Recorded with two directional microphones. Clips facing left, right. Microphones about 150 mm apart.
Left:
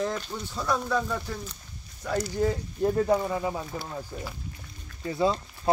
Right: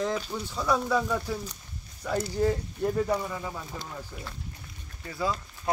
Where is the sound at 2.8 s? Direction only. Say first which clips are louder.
Left 3 dB; 25° left (ahead or behind).